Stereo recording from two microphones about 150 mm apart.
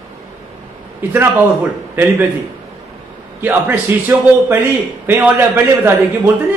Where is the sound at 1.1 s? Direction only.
15° right (ahead or behind).